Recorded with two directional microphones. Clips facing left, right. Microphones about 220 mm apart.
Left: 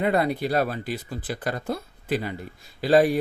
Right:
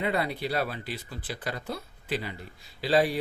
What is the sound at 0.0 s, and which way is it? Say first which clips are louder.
Speech: left 6 dB; 50° left (ahead or behind).